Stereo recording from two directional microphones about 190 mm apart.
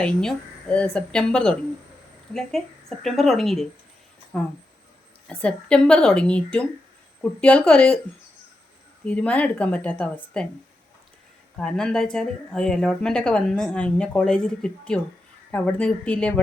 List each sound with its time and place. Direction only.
0.0 s speech: 5° left (ahead or behind)
9.0 s a woman's voice: 5° left (ahead or behind)
11.5 s a woman's voice: 5° left (ahead or behind)